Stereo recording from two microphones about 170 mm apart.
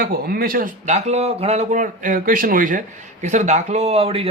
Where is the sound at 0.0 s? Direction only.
60° right (ahead or behind).